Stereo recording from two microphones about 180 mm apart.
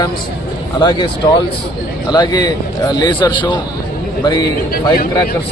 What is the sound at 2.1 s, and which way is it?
A man's voice, 25° left (ahead or behind).